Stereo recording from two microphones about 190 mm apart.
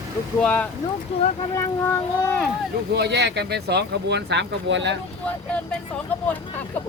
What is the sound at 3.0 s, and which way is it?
Speech, 65° right (ahead or behind).